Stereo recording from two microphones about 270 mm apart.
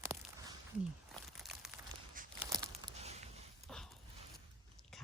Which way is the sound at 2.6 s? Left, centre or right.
Centre.